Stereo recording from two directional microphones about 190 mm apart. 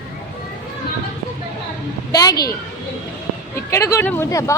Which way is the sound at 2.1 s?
20° left (ahead or behind).